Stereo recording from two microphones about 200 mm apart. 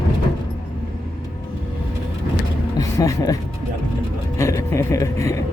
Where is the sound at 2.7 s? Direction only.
15° left (ahead or behind).